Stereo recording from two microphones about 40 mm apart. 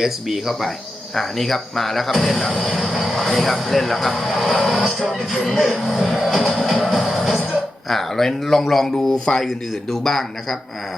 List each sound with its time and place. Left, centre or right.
0.0 s speech: centre
1.1 s speech: centre
5.7 s music: centre
7.9 s a sound: centre
8.4 s speech: centre
9.0 s speech: left
9.9 s a man's voice: centre